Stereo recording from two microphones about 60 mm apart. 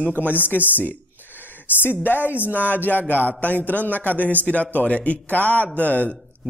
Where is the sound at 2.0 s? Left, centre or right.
Left.